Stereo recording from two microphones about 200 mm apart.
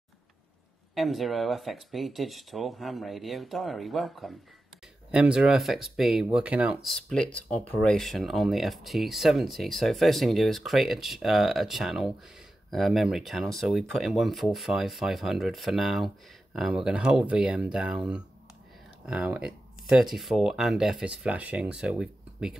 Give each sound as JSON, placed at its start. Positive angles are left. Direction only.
{"t": 0.9, "sound": "speech", "side_deg": 0}